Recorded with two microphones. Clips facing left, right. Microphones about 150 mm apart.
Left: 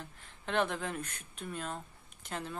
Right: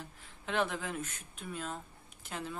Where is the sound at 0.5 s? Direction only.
5° right (ahead or behind).